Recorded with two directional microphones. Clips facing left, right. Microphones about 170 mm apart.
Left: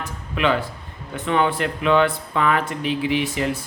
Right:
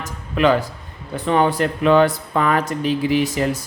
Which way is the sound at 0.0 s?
40° right (ahead or behind).